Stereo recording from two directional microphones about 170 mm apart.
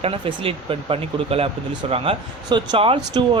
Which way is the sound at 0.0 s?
35° right (ahead or behind).